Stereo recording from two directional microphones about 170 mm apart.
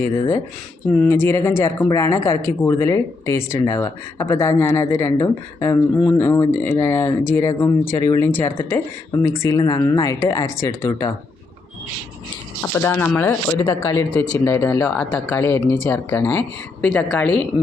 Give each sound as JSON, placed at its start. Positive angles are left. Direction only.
{"t": 0.9, "sound": "speech", "side_deg": 10}
{"t": 12.7, "sound": "speech", "side_deg": 15}